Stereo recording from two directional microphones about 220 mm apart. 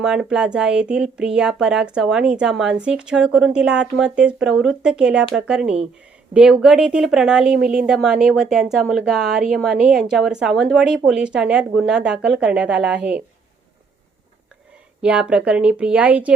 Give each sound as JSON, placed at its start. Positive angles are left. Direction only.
{"t": 0.0, "sound": "speech", "side_deg": -5}
{"t": 15.0, "sound": "speech", "side_deg": -5}